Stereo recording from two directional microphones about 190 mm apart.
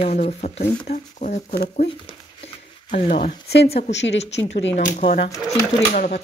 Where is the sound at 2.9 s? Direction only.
40° left (ahead or behind).